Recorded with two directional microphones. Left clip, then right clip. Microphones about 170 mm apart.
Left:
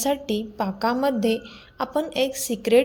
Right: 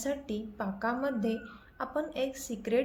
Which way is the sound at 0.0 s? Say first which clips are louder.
Left 11 dB; 45° left (ahead or behind).